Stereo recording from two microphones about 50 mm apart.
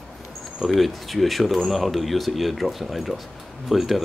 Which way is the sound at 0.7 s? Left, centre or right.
Centre.